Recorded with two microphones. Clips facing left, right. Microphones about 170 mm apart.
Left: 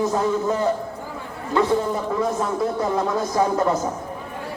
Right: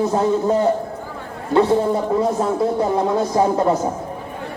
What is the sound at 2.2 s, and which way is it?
Speech, 30° right (ahead or behind).